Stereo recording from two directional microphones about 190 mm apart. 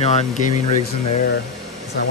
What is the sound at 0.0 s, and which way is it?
Speech, 35° left (ahead or behind).